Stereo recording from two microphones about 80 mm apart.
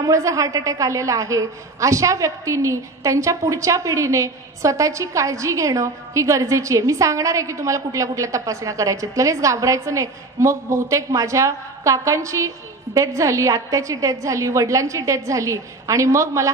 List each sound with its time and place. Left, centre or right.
0.0 s a woman's voice: right